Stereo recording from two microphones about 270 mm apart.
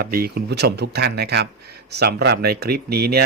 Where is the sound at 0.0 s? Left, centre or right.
Right.